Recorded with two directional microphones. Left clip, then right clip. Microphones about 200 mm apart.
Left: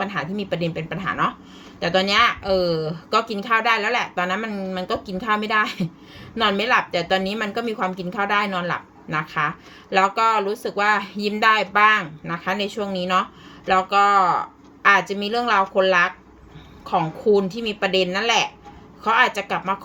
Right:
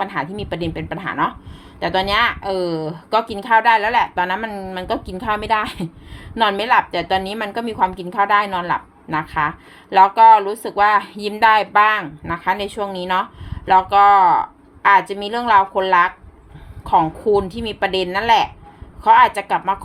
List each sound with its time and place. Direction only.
0.0 s a woman's voice: 45° right (ahead or behind)